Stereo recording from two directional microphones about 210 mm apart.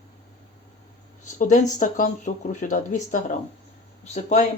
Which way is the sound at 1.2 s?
35° left (ahead or behind).